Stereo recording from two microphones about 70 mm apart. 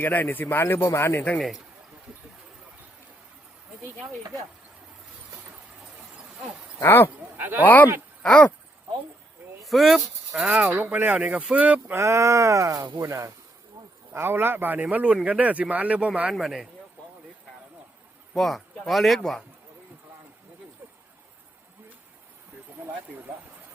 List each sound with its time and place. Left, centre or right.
0.0 s speech: left
1.4 s speech: centre
6.8 s speech: left
7.3 s speech: right
7.6 s speech: left
8.2 s a sound: centre
9.6 s speech: centre
10.7 s speech: right
11.9 s speech: right
13.8 s bee: right
14.1 s speech: right; by 16.3 s centre
16.3 s speech: centre
18.3 s speech: centre
22.8 s a sound: right